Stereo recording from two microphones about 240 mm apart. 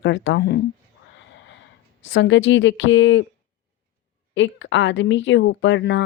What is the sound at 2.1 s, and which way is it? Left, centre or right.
Speech, left.